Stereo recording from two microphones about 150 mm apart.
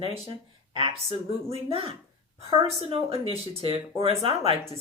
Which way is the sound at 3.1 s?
40° right (ahead or behind).